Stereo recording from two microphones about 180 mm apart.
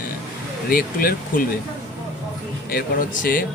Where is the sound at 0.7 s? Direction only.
55° left (ahead or behind).